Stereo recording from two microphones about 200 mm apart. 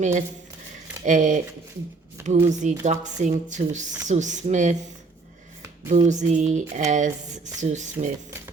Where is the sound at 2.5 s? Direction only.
40° right (ahead or behind).